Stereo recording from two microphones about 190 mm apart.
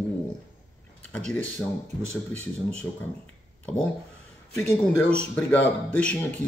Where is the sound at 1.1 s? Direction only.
5° left (ahead or behind).